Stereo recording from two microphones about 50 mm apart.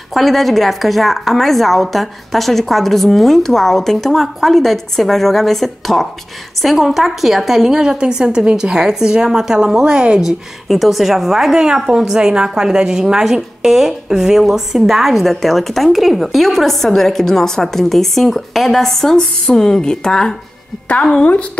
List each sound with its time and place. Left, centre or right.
0.1 s a woman's voice: centre
10.2 s a woman's voice: centre; by 21.3 s left